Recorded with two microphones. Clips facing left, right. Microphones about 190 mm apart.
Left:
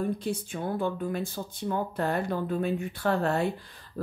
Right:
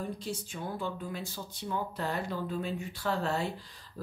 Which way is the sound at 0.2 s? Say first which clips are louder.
Left 6 dB; 55° left (ahead or behind).